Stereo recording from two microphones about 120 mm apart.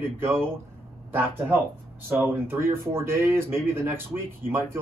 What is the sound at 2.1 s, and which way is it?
Speech, 20° right (ahead or behind).